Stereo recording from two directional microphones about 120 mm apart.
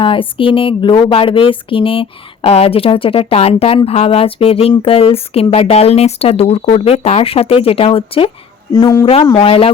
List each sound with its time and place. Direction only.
0.0 s speech: 45° left (ahead or behind)
8.7 s speech: 30° left (ahead or behind)
9.2 s speech: 45° left (ahead or behind)